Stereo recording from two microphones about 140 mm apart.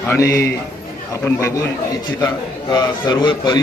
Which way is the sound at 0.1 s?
20° left (ahead or behind).